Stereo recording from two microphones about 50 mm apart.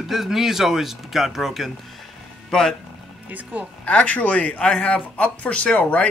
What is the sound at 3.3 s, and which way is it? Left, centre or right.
Speech, right.